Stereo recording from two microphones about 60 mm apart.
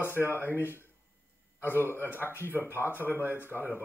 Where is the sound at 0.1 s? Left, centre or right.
Right.